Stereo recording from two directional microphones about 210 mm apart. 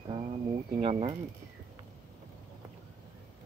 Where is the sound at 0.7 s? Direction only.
25° right (ahead or behind).